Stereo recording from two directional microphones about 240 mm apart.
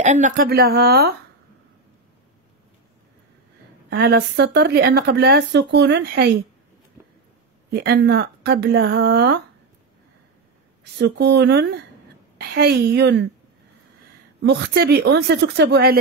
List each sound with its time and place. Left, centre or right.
0.0 s speech: right
3.9 s speech: right
7.7 s speech: right
11.0 s speech: right
14.4 s speech: right